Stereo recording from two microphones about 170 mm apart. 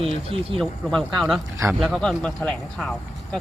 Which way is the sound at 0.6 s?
5° left (ahead or behind).